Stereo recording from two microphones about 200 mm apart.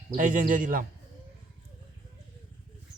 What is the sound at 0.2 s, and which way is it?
Speech, 40° right (ahead or behind).